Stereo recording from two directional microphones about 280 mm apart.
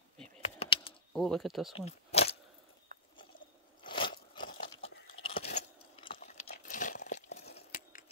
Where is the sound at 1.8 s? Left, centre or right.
Left.